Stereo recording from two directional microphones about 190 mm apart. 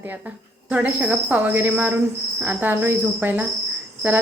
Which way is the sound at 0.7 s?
5° right (ahead or behind).